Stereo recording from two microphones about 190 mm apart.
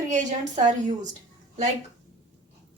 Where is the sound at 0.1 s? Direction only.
40° right (ahead or behind).